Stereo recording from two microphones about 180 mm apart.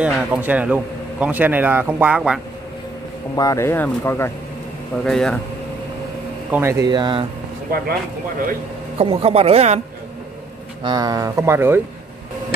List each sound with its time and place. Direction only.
0.0 s speech: 10° right (ahead or behind)
3.3 s speech: 15° left (ahead or behind)
5.0 s speech: 5° left (ahead or behind)
6.5 s speech: 15° right (ahead or behind)
8.9 s speech: 35° right (ahead or behind)
10.8 s speech: 25° right (ahead or behind)